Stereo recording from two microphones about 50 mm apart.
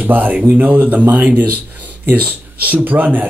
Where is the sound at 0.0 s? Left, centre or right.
Right.